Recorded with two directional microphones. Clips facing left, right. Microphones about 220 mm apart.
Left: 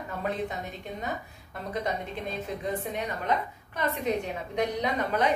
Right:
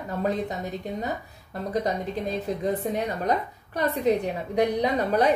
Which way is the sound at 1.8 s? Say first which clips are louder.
Right 5 dB; 35° right (ahead or behind).